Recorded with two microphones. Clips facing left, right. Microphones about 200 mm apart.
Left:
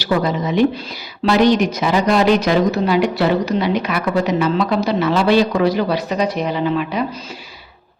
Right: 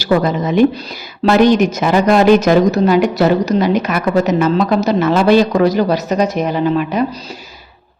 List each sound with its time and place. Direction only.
0.0 s speech: 50° right (ahead or behind)